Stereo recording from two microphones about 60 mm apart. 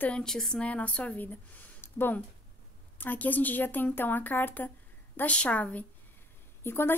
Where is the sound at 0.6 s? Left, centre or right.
Left.